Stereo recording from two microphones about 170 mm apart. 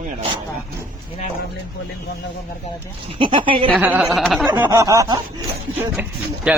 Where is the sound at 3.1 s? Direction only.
30° right (ahead or behind).